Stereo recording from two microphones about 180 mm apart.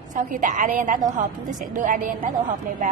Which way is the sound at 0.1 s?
45° right (ahead or behind).